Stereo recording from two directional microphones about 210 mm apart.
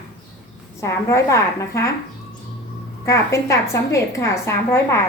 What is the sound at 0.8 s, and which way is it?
A woman's voice, 15° left (ahead or behind).